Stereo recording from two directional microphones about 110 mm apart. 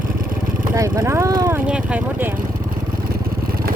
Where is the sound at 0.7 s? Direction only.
25° right (ahead or behind).